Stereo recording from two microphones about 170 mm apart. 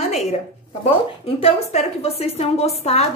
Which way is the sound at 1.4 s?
35° left (ahead or behind).